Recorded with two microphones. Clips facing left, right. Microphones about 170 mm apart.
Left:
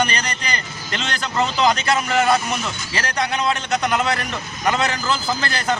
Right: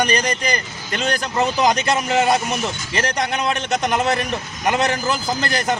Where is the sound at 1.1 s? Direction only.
15° right (ahead or behind).